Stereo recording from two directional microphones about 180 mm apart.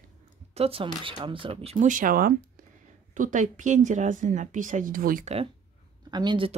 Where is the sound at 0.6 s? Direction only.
30° right (ahead or behind); by 5.3 s 50° right (ahead or behind).